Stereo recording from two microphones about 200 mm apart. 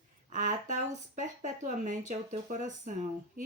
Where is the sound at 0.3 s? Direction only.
40° right (ahead or behind).